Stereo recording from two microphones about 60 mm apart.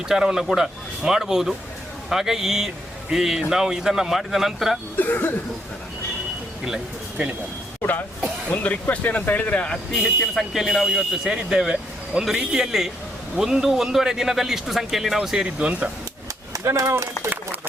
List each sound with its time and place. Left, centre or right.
0.1 s speech: centre
4.9 s speech: left
7.8 s speech: left
10.3 s speech: centre
15.4 s speech: right
16.5 s speech: right